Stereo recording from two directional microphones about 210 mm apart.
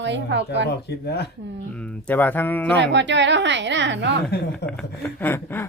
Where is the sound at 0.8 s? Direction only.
50° left (ahead or behind).